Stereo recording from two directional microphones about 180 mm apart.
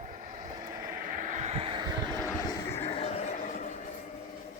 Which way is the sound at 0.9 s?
50° right (ahead or behind).